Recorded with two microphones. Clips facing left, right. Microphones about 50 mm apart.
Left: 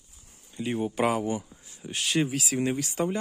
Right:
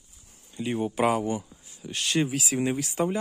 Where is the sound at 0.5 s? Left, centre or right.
Centre.